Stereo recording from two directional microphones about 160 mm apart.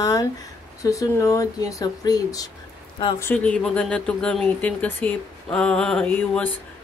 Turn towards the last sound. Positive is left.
turn(degrees=10)  # may be behind; listen again after turning